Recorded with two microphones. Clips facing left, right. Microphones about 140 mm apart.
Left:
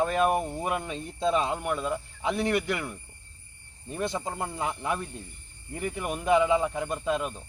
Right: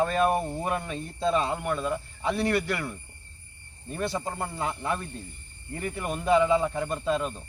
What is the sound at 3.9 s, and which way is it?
Speech, 20° left (ahead or behind).